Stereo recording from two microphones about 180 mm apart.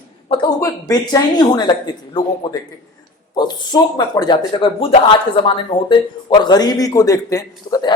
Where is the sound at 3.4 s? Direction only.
25° left (ahead or behind).